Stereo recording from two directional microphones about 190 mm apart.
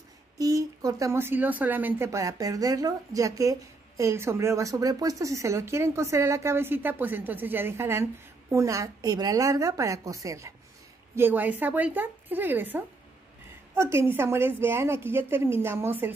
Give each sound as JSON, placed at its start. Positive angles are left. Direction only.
{"t": 0.4, "sound": "speech", "side_deg": -20}